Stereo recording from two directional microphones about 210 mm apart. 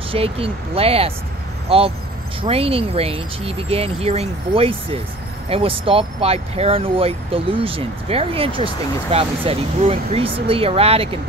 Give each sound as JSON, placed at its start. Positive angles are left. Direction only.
{"t": 0.1, "sound": "speech", "side_deg": -25}
{"t": 2.4, "sound": "speech", "side_deg": -25}